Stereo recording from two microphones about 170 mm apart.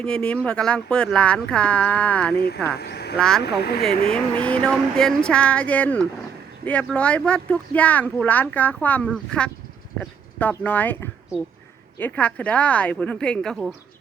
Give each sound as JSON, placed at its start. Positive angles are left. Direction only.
{"t": 0.0, "sound": "speech", "side_deg": 5}
{"t": 2.7, "sound": "speech", "side_deg": 70}
{"t": 3.2, "sound": "speech", "side_deg": 5}
{"t": 3.4, "sound": "speech", "side_deg": 75}
{"t": 3.8, "sound": "speech", "side_deg": 5}